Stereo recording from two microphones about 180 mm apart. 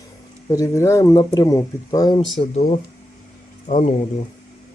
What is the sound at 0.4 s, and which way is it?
Speech, 15° left (ahead or behind).